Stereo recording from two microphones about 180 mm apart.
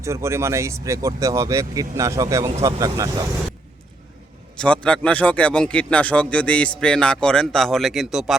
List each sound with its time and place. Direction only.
0.0 s speech: 15° right (ahead or behind)
4.5 s speech: 5° left (ahead or behind)